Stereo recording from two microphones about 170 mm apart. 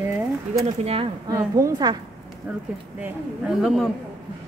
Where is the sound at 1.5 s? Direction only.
20° right (ahead or behind).